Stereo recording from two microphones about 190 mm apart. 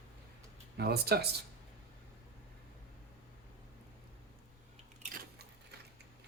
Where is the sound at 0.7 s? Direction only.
55° right (ahead or behind).